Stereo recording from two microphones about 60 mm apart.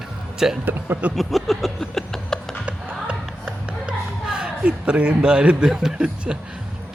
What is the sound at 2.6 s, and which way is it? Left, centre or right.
Music, centre.